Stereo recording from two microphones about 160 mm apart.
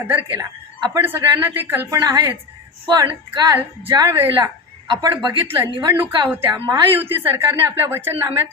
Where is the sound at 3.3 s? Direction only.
25° right (ahead or behind).